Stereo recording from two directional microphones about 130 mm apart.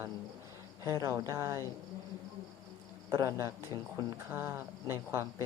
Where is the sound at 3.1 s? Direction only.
25° right (ahead or behind).